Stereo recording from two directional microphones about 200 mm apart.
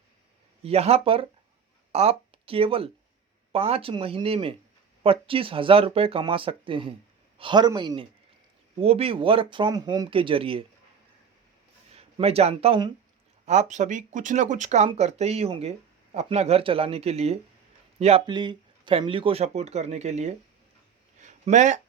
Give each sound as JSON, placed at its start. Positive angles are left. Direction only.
{"t": 0.6, "sound": "speech", "side_deg": -30}
{"t": 11.9, "sound": "speech", "side_deg": -30}
{"t": 21.2, "sound": "a sound", "side_deg": -35}